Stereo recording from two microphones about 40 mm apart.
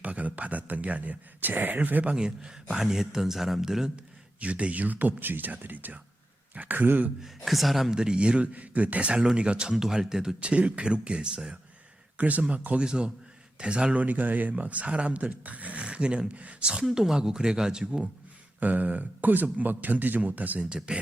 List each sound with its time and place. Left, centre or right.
0.0 s speech: right
2.1 s speech: centre
3.9 s speech: right
6.7 s speech: right
7.2 s a man's voice: centre
7.9 s speech: centre
10.4 s speech: right
12.1 s speech: right
12.8 s speech: right
14.0 s speech: right
18.6 s speech: right
20.6 s speech: right